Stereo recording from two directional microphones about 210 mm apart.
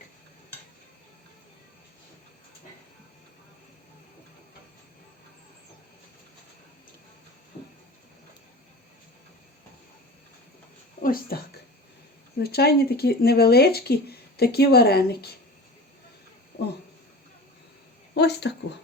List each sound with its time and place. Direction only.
11.0 s a woman's voice: 45° left (ahead or behind)
12.4 s speech: 50° left (ahead or behind)
16.5 s a sound: 50° left (ahead or behind)
18.1 s speech: 50° left (ahead or behind)